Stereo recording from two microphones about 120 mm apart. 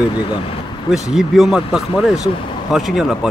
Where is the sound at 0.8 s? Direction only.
5° right (ahead or behind).